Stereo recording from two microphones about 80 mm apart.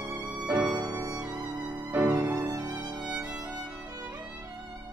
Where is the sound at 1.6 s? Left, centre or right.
Centre.